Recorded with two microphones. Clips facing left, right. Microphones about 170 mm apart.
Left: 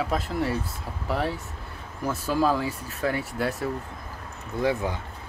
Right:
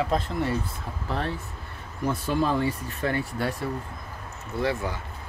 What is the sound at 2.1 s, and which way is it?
Speech, 5° left (ahead or behind).